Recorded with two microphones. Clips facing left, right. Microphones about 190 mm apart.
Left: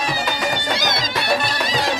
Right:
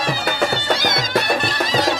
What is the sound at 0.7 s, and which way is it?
Music, 50° right (ahead or behind).